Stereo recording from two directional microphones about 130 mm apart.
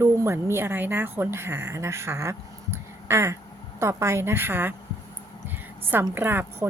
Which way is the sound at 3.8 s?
20° right (ahead or behind).